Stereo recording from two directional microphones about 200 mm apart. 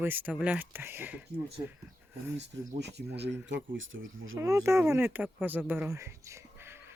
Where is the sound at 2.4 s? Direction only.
60° right (ahead or behind).